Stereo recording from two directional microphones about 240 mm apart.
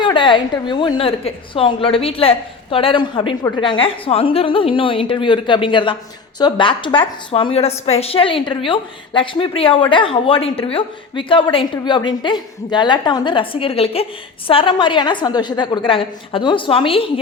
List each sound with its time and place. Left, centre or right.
0.0 s a woman's voice: centre